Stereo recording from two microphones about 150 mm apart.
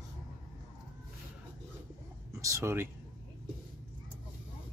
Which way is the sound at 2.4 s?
20° right (ahead or behind).